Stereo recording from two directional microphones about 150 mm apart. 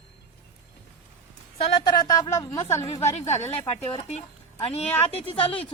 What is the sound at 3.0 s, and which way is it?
Speech, 45° left (ahead or behind).